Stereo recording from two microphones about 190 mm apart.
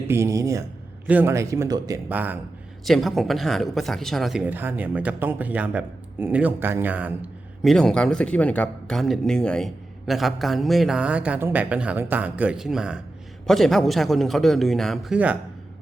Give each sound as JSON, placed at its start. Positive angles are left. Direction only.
{"t": 0.1, "sound": "a man's voice", "side_deg": -15}